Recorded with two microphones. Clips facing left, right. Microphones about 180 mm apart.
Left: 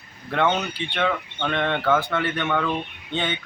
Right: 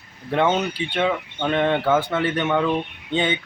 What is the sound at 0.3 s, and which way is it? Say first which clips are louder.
A man's voice: right 3 dB; 10° right (ahead or behind).